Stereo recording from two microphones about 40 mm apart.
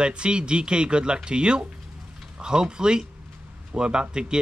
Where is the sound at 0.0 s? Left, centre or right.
Right.